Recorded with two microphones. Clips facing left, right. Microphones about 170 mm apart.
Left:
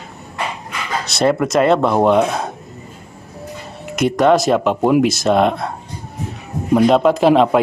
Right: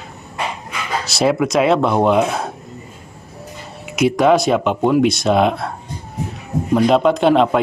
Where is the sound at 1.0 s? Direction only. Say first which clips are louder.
Left 1 dB; centre (ahead or behind).